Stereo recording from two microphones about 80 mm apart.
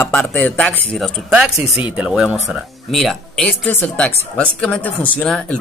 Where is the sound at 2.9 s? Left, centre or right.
Centre.